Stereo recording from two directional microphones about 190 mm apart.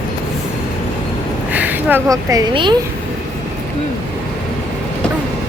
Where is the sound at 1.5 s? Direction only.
10° right (ahead or behind); by 2.7 s 25° right (ahead or behind).